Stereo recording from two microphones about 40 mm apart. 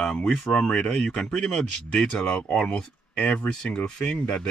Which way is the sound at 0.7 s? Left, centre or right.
Left.